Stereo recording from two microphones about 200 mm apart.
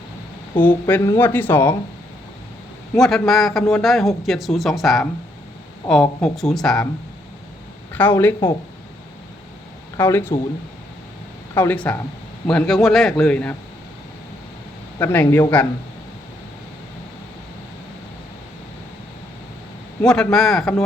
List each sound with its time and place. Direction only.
0.5 s speech: 10° left (ahead or behind)
2.9 s a man's voice: centre (ahead or behind)
7.9 s speech: 10° left (ahead or behind)
10.0 s speech: 10° left (ahead or behind)
11.5 s a man's voice: 10° left (ahead or behind)
14.9 s speech: 10° left (ahead or behind)
20.0 s a man's voice: 5° left (ahead or behind)